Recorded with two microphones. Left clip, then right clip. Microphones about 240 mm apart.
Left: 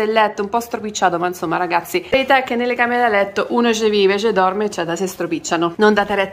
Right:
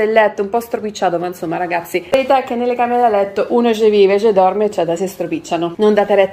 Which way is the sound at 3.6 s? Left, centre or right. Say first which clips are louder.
Right 4 dB; left.